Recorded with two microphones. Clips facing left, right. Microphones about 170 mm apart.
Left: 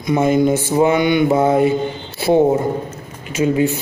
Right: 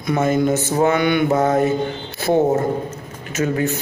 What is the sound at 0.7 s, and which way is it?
Mantra, 20° left (ahead or behind).